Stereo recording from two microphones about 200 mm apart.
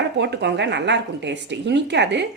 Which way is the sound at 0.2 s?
60° right (ahead or behind).